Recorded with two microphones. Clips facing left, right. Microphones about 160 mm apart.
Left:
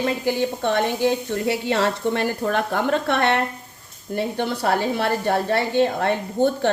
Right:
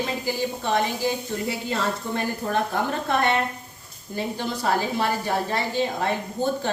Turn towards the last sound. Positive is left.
turn(degrees=65)  # may be behind; listen again after turning